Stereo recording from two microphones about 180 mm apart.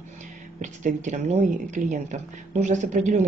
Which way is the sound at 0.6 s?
40° right (ahead or behind).